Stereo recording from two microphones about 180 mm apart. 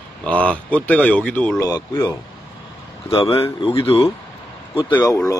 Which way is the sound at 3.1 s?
30° left (ahead or behind).